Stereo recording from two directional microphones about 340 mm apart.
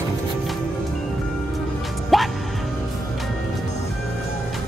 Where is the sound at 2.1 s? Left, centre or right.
Centre.